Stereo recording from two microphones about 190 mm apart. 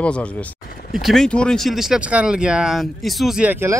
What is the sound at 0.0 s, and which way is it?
Speech, 5° left (ahead or behind).